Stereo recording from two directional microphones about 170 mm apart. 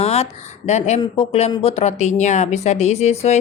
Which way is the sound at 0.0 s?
35° left (ahead or behind).